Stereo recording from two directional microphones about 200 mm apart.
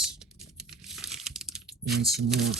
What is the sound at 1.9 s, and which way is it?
Speech, 55° right (ahead or behind).